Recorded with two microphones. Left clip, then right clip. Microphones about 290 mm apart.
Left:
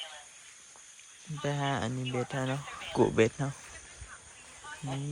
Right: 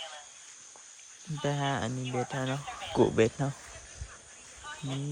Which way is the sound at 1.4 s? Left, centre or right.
Centre.